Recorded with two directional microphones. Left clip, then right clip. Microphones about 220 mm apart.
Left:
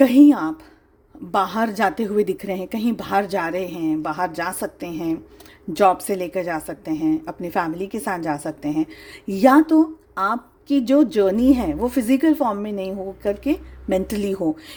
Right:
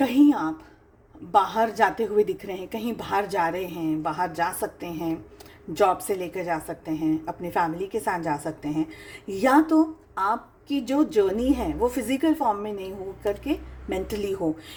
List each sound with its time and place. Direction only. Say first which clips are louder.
0.0 s a woman's voice: left 7 dB; 50° left (ahead or behind)